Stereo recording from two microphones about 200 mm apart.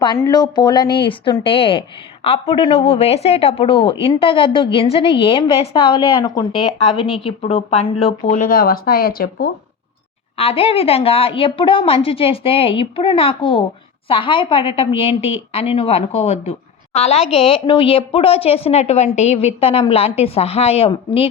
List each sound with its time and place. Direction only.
0.0 s speech: 20° left (ahead or behind)
8.3 s speech: 45° left (ahead or behind)
10.3 s speech: 30° left (ahead or behind)